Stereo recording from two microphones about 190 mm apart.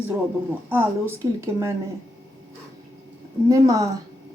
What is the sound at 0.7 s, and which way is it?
Speech, 10° right (ahead or behind).